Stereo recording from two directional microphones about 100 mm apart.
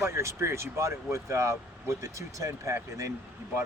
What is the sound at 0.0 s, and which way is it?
Speech, 30° right (ahead or behind).